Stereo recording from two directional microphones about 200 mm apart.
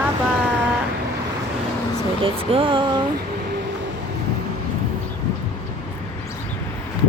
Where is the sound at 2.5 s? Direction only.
25° right (ahead or behind).